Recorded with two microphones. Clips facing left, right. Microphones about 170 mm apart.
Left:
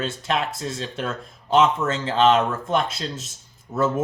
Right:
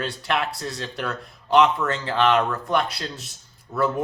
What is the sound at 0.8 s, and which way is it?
Speech, 25° left (ahead or behind).